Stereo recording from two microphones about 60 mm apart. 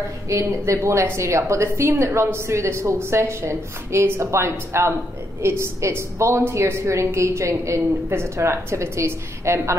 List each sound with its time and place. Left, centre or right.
0.3 s a woman's voice: right